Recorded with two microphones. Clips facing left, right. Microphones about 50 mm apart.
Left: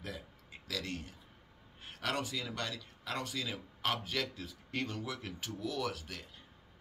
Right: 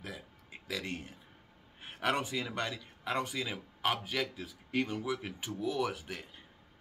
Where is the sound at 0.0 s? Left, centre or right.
Centre.